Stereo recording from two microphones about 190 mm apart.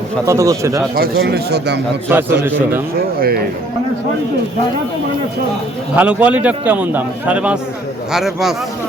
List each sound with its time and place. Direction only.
0.3 s a man's voice: 15° right (ahead or behind)
0.9 s speech: 55° right (ahead or behind)
2.1 s a man's voice: 10° right (ahead or behind)
3.2 s speech: 55° right (ahead or behind)
6.0 s a man's voice: 5° right (ahead or behind)